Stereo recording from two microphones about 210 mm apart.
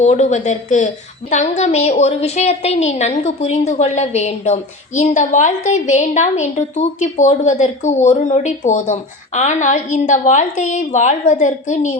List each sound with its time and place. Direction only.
0.0 s a woman's voice: 35° left (ahead or behind)